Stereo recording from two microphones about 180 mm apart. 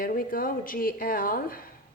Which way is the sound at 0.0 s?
50° left (ahead or behind).